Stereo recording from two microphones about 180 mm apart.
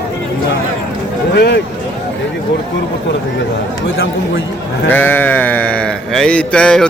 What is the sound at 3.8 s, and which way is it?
Speech, 90° left.